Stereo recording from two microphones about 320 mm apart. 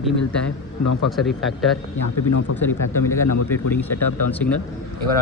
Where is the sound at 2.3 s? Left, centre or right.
Left.